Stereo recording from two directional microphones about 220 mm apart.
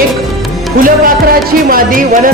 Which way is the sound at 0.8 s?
40° right (ahead or behind).